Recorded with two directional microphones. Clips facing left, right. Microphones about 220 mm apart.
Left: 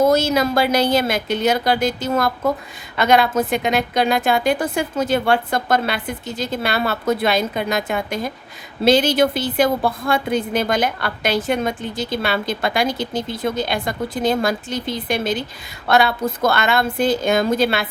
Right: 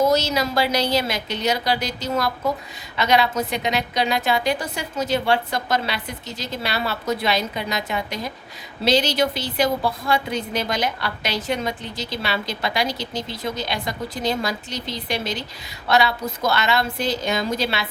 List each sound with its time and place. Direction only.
0.0 s a woman's voice: 50° left (ahead or behind)